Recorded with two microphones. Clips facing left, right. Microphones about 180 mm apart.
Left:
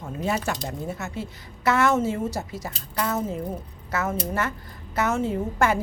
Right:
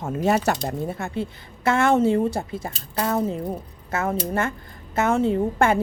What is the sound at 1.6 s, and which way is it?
Speech, 25° right (ahead or behind).